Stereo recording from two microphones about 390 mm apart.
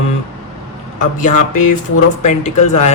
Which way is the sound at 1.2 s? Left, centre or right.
Centre.